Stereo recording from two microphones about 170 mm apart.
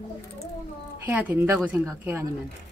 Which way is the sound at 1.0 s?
10° right (ahead or behind).